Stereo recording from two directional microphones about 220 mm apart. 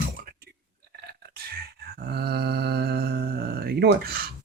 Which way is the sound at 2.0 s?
45° right (ahead or behind).